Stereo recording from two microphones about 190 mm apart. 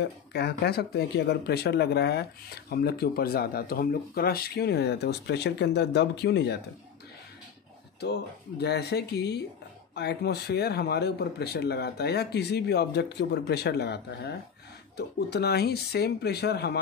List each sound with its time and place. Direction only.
0.0 s speech: 60° left (ahead or behind)
8.0 s speech: 60° left (ahead or behind)